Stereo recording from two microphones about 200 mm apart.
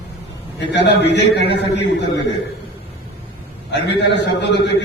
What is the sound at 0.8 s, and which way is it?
A man's voice, 60° left (ahead or behind).